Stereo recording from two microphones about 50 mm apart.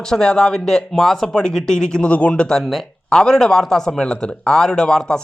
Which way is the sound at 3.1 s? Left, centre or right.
Centre.